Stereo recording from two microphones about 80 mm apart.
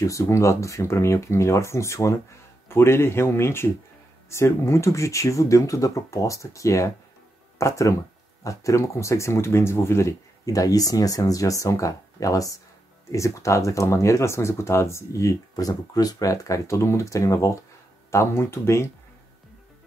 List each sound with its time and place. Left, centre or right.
0.0 s speech: left
10.4 s speech: left